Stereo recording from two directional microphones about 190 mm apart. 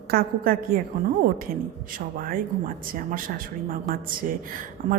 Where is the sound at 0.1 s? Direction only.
50° right (ahead or behind).